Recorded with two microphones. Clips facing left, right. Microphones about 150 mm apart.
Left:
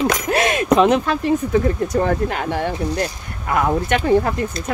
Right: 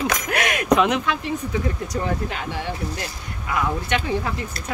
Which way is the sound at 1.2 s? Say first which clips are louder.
Left 8 dB; 50° left (ahead or behind).